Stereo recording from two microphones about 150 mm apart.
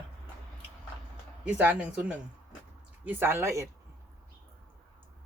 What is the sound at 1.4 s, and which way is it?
Speech, 10° right (ahead or behind).